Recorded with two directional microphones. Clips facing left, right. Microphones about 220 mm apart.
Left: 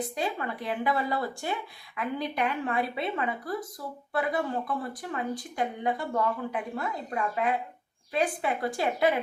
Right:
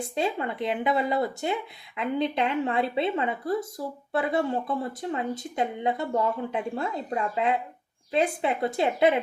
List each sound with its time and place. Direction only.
0.2 s speech: 25° right (ahead or behind)